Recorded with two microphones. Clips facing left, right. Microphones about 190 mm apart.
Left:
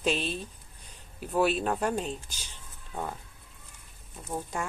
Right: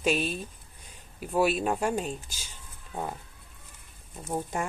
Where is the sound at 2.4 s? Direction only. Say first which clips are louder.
Even; 15° right (ahead or behind).